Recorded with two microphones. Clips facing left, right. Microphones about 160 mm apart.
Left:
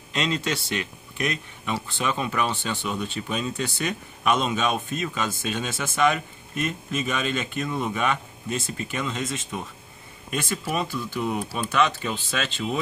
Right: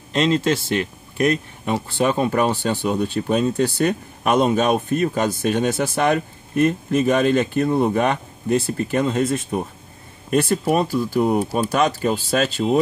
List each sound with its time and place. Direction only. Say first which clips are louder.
0.1 s speech: right 8 dB; 40° right (ahead or behind)
2.7 s speech: right 8 dB; 35° right (ahead or behind)
3.0 s speech: right 9 dB; 50° right (ahead or behind)
5.8 s speech: right 4 dB; 40° right (ahead or behind)
9.1 s speech: right 10 dB; 65° right (ahead or behind)
10.3 s speech: right 10 dB; 40° right (ahead or behind)